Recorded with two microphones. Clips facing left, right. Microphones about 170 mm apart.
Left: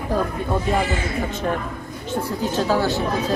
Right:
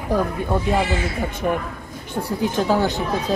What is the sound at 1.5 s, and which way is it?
Speech, 5° right (ahead or behind).